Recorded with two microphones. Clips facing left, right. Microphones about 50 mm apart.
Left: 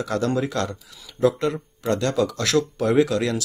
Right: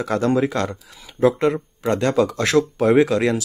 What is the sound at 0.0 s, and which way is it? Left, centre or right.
Speech, centre.